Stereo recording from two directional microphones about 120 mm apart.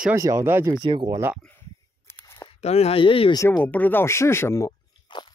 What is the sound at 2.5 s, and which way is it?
Speech, 60° left (ahead or behind).